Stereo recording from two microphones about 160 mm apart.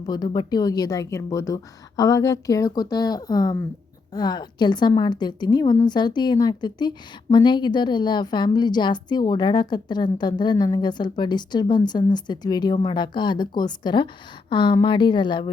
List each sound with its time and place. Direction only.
0.0 s a woman's voice: 30° left (ahead or behind)